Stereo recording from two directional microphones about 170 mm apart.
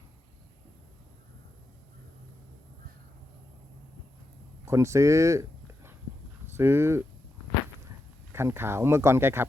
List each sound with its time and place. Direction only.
4.6 s a sound: 15° right (ahead or behind)
6.5 s speech: 15° right (ahead or behind)
8.3 s speech: 15° right (ahead or behind)